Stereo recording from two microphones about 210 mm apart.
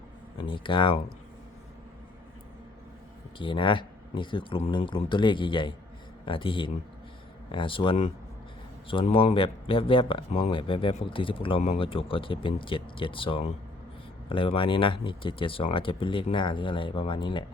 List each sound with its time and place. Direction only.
0.3 s speech: 25° left (ahead or behind)
3.3 s speech: 25° left (ahead or behind)